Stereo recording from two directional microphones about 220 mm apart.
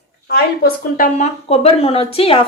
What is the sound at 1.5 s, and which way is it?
Speech, 25° left (ahead or behind).